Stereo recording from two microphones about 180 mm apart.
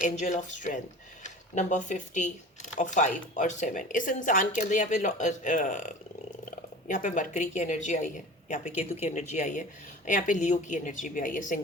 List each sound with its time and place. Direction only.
0.0 s speech: 45° left (ahead or behind)